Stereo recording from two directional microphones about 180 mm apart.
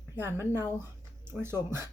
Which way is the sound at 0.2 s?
15° right (ahead or behind).